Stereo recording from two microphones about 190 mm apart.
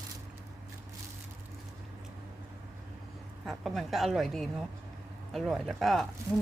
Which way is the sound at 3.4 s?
Centre (ahead or behind).